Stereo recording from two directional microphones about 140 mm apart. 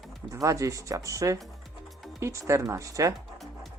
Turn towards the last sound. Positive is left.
turn(degrees=-25)  # may be behind; listen again after turning